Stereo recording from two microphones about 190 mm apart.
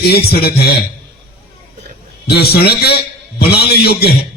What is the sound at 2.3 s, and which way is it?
A man's voice, 55° left (ahead or behind).